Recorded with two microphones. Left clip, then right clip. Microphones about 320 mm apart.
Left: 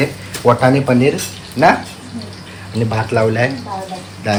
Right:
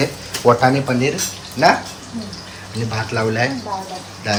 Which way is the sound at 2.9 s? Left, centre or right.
Centre.